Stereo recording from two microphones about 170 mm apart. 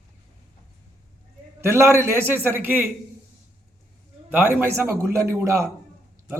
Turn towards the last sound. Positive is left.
turn(degrees=-15)  # may be behind; listen again after turning